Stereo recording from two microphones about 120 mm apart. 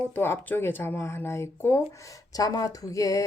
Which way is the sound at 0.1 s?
15° left (ahead or behind).